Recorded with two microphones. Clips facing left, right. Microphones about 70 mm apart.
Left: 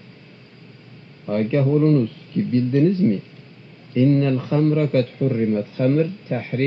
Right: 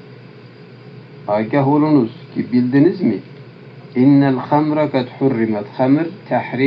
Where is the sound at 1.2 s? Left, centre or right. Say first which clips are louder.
Right 5 dB; right.